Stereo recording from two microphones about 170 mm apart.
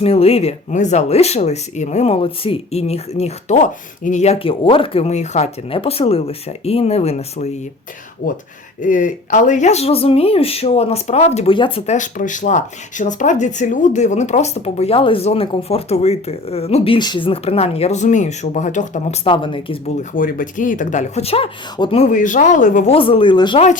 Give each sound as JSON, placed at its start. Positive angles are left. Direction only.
{"t": 0.0, "sound": "speech", "side_deg": 35}
{"t": 8.2, "sound": "speech", "side_deg": 55}
{"t": 11.9, "sound": "speech", "side_deg": 50}
{"t": 19.2, "sound": "speech", "side_deg": 30}
{"t": 20.0, "sound": "speech", "side_deg": 50}
{"t": 23.0, "sound": "speech", "side_deg": 30}